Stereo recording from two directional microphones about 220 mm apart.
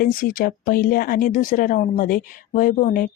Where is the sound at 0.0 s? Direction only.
40° left (ahead or behind).